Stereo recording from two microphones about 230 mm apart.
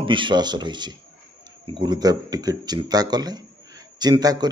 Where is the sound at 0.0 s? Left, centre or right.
Right.